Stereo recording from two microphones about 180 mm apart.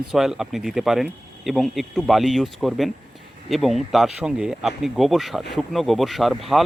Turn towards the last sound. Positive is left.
turn(degrees=0)  # may be behind; listen again after turning